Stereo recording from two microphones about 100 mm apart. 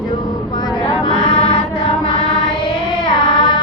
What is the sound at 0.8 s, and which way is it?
Music, 50° left (ahead or behind).